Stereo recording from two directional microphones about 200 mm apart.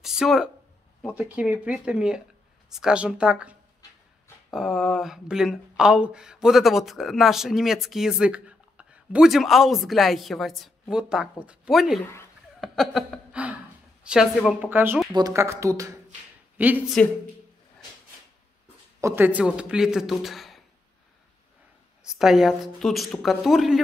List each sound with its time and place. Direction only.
0.0 s a sound: centre (ahead or behind)
1.1 s speech: 5° right (ahead or behind)
12.5 s chuckle: centre (ahead or behind)
14.0 s speech: centre (ahead or behind)
18.9 s speech: 10° right (ahead or behind)
22.0 s speech: centre (ahead or behind)